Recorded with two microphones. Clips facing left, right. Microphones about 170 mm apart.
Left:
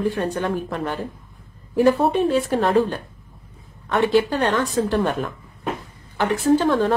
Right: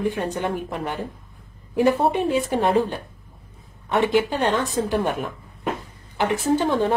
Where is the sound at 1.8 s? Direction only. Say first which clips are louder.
Left 2 dB; 15° right (ahead or behind).